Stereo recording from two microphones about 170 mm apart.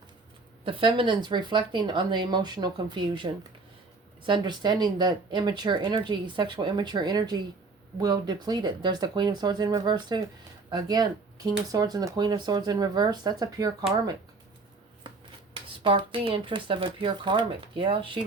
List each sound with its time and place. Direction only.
0.6 s speech: 30° right (ahead or behind)
15.8 s speech: 30° right (ahead or behind)